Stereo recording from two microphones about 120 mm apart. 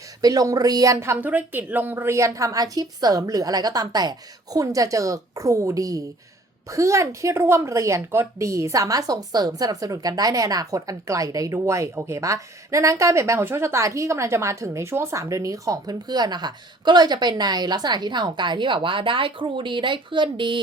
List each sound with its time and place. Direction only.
0.2 s a woman's voice: 30° right (ahead or behind)